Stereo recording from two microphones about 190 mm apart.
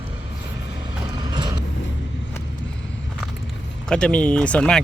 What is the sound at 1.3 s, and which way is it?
Vehicle, 20° right (ahead or behind).